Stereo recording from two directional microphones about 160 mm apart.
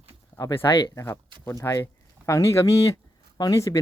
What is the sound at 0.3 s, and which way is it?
Speech, 20° left (ahead or behind).